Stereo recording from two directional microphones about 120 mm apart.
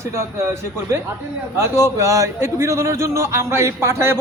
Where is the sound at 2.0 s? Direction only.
25° right (ahead or behind).